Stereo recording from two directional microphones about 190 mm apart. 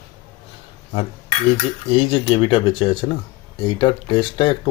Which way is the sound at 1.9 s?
30° left (ahead or behind).